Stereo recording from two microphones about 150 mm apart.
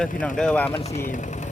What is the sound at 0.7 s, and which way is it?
Speech, 45° left (ahead or behind).